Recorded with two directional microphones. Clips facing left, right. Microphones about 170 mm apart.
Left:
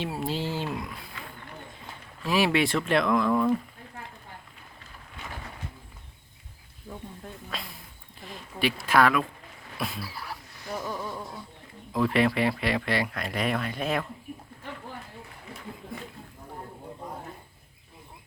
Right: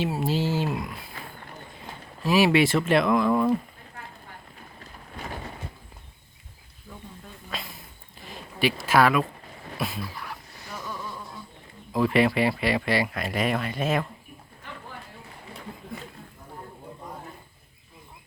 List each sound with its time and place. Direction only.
0.2 s speech: 5° right (ahead or behind)
2.2 s speech: 5° right (ahead or behind)
7.5 s a sound: centre (ahead or behind)
8.2 s speech: centre (ahead or behind)
10.2 s a sound: 35° left (ahead or behind)
11.9 s speech: 5° right (ahead or behind)